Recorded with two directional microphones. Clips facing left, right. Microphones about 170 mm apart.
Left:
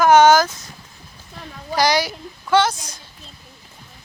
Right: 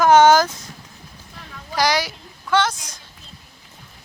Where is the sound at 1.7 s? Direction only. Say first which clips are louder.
Left 2 dB; centre (ahead or behind).